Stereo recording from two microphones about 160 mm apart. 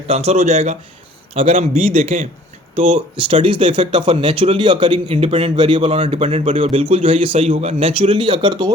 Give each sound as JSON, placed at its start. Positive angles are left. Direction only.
{"t": 0.1, "sound": "speech", "side_deg": -40}
{"t": 3.2, "sound": "speech", "side_deg": -30}
{"t": 3.9, "sound": "speech", "side_deg": -45}
{"t": 4.2, "sound": "speech", "side_deg": -30}
{"t": 6.6, "sound": "speech", "side_deg": -35}